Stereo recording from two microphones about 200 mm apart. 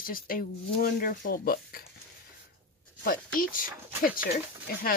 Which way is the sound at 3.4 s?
45° left (ahead or behind).